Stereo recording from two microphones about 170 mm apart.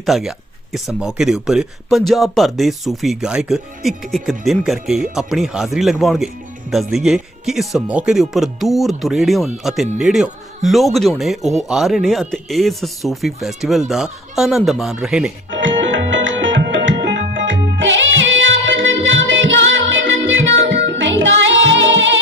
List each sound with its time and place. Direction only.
0.0 s speech: centre (ahead or behind)
15.6 s tabla: 90° right
17.4 s music: 90° right